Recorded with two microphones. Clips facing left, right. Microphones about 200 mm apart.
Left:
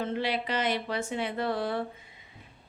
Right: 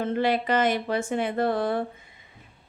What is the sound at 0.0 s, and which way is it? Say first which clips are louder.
Speech: right 6 dB; 50° right (ahead or behind).